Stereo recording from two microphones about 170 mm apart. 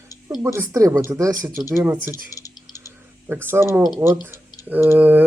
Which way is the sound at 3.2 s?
15° right (ahead or behind).